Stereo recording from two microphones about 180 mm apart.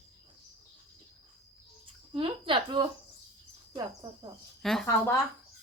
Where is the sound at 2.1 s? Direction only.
30° right (ahead or behind).